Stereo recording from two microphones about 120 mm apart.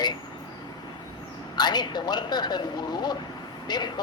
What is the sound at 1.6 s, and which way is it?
Speech, 35° left (ahead or behind).